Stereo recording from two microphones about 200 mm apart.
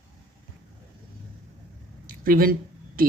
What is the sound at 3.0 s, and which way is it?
Speech, 45° right (ahead or behind).